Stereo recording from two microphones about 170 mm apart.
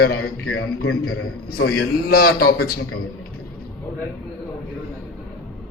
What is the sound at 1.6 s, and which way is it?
A man's voice, 65° left (ahead or behind).